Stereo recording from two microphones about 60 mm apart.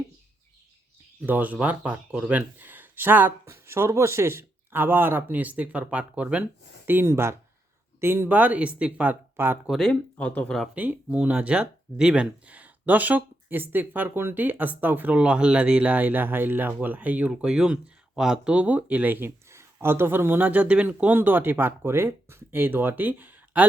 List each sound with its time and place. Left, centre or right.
1.2 s a man's voice: right
3.4 s a man's voice: right
6.8 s speech: right
7.1 s speech: right
8.3 s speech: right
9.3 s speech: right
9.9 s speech: left
10.8 s speech: right
12.5 s speech: right
17.3 s speech: centre
18.5 s speech: right
19.5 s a man's voice: right